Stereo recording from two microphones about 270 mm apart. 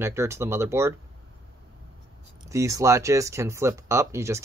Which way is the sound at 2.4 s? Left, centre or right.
Centre.